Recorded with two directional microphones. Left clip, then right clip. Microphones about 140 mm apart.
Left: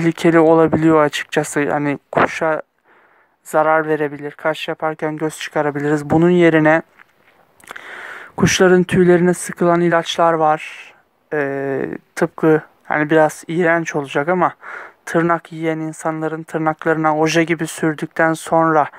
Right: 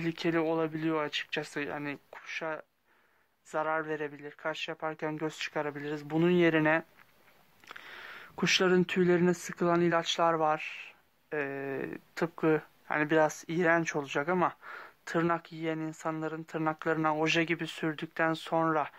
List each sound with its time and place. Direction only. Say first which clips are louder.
0.0 s speech: left 18 dB; 60° left (ahead or behind)
4.7 s speech: left 14 dB; 35° left (ahead or behind)
5.8 s speech: left 16 dB; 55° left (ahead or behind); by 18.9 s 40° left (ahead or behind)